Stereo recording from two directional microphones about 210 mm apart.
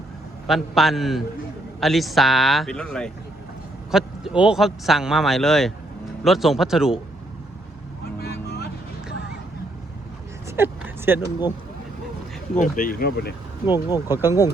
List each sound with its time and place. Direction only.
0.4 s speech: centre (ahead or behind)
8.2 s vehicle: 50° left (ahead or behind)
10.5 s a sound: 10° right (ahead or behind)
12.5 s speech: 35° left (ahead or behind)
13.7 s speech: 20° left (ahead or behind)
14.1 s speech: 10° right (ahead or behind)